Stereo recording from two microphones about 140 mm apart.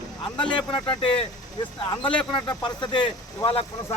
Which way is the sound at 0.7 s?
35° left (ahead or behind).